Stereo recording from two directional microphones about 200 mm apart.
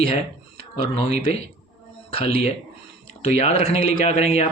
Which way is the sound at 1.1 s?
50° right (ahead or behind).